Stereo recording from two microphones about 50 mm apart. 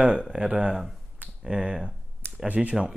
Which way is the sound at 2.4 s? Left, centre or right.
Right.